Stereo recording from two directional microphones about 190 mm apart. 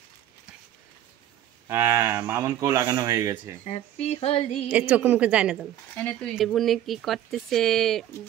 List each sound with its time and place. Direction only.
1.7 s speech: 10° right (ahead or behind)
3.6 s speech: 35° left (ahead or behind)
4.5 s speech: 5° right (ahead or behind)
5.9 s speech: 5° left (ahead or behind)